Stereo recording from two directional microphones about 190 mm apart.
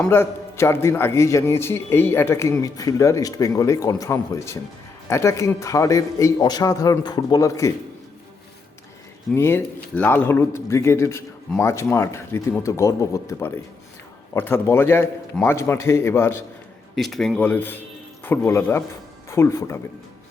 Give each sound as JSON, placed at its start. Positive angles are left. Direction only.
{"t": 0.0, "sound": "a man's voice", "side_deg": 10}
{"t": 9.3, "sound": "a man's voice", "side_deg": 15}
{"t": 16.9, "sound": "a man's voice", "side_deg": 0}